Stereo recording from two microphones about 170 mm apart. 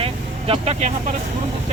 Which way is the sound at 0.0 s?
35° right (ahead or behind).